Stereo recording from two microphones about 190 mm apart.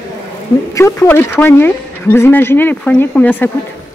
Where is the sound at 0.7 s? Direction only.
15° left (ahead or behind).